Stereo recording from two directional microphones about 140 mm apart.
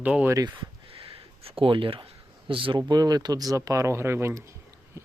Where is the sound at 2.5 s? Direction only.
40° right (ahead or behind); by 4.4 s 20° right (ahead or behind).